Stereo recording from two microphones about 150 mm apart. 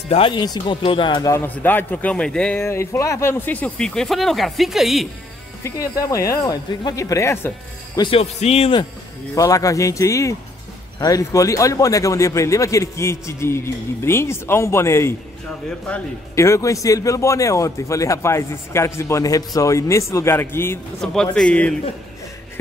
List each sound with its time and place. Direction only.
0.1 s speech: 35° left (ahead or behind)
1.3 s a man's voice: 15° left (ahead or behind)
2.6 s speech: 15° left (ahead or behind); by 5.0 s centre (ahead or behind)
5.6 s a man's voice: 20° left (ahead or behind)
8.1 s a man's voice: 45° left (ahead or behind)
9.3 s a man's voice: 20° left (ahead or behind)
16.3 s a man's voice: 20° left (ahead or behind)
21.0 s speech: 5° left (ahead or behind)